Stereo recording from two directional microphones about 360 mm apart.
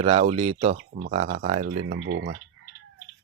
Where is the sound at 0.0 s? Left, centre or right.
Centre.